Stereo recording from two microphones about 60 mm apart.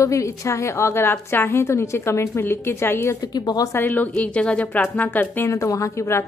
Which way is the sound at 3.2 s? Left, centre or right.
Left.